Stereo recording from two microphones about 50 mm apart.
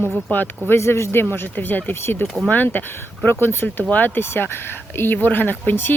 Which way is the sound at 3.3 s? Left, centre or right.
Left.